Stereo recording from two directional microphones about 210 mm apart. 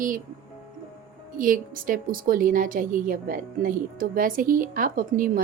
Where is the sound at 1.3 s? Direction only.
40° right (ahead or behind).